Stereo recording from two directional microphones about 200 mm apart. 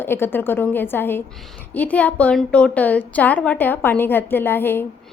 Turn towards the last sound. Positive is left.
turn(degrees=10)  # may be behind; listen again after turning